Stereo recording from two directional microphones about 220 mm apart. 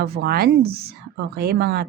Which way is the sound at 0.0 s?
45° right (ahead or behind).